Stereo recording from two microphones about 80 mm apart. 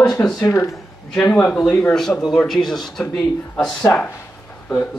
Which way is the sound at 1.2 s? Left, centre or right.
Centre.